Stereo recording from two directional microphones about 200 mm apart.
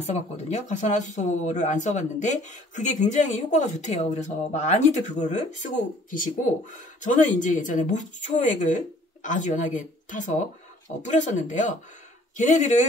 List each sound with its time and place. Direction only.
0.0 s speech: 35° left (ahead or behind)